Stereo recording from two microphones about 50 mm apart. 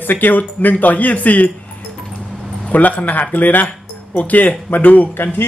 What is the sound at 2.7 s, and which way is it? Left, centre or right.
Speech, left.